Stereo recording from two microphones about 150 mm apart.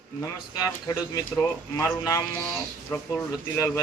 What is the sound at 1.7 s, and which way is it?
Speech, 20° left (ahead or behind).